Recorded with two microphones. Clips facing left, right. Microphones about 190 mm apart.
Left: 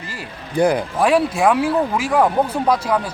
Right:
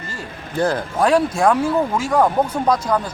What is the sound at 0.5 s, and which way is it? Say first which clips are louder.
Speech: left 3 dB; 15° left (ahead or behind).